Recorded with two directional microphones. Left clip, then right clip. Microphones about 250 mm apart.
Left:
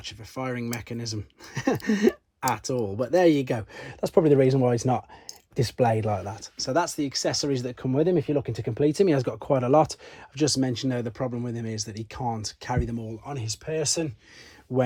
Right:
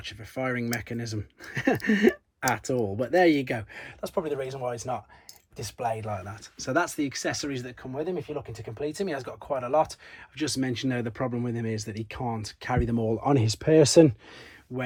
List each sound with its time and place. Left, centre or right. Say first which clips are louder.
0.0 s speech: right 2 dB; centre
4.0 s speech: left 10 dB; left
6.4 s speech: even; centre; by 10.0 s left
10.3 s speech: left 5 dB; centre
13.2 s speech: right 10 dB; right
14.7 s speech: left 9 dB; left